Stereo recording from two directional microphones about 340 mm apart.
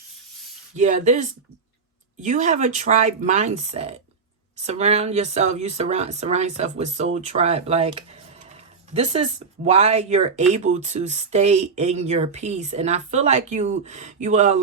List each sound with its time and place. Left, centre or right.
0.8 s speech: right